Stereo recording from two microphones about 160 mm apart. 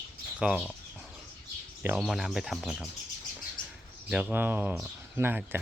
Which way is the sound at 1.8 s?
5° right (ahead or behind).